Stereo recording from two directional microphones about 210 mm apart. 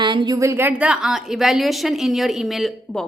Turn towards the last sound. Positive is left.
turn(degrees=0)  # may be behind; listen again after turning